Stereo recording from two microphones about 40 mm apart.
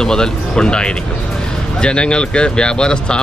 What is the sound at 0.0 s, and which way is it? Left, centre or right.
Speech, centre.